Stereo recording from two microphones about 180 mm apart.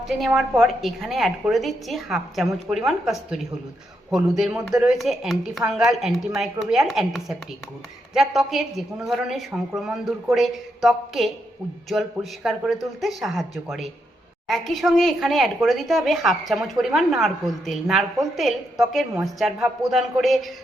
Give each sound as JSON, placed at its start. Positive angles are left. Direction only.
{"t": 0.1, "sound": "speech", "side_deg": 0}